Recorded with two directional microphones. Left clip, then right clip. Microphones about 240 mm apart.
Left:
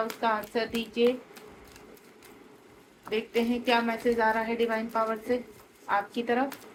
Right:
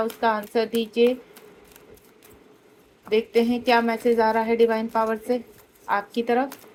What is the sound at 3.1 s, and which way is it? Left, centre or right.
A woman's voice, right.